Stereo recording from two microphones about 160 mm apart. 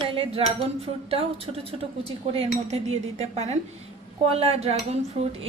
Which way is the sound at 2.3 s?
40° right (ahead or behind).